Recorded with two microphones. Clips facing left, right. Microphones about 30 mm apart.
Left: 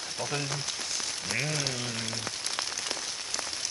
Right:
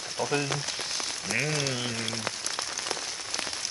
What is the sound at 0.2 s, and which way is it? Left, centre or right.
Speech, right.